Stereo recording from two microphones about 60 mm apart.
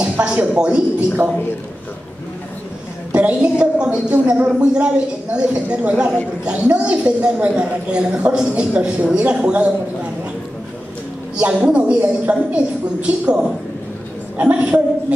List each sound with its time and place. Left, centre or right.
0.0 s a sound: centre
0.6 s a woman's voice: centre
0.9 s speech: right
3.1 s a woman's voice: right
11.3 s a woman's voice: centre